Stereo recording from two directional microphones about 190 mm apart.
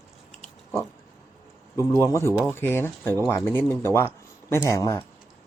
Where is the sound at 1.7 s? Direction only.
15° left (ahead or behind).